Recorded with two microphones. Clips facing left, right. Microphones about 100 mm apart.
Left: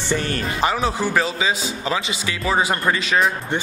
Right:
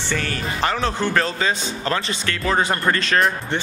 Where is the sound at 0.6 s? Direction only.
10° left (ahead or behind).